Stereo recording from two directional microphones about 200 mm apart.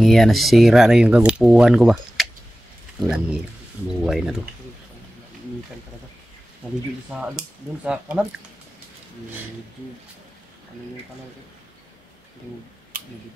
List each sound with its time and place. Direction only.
0.0 s speech: centre (ahead or behind)
7.8 s speech: 5° right (ahead or behind)
12.9 s a sound: 45° right (ahead or behind)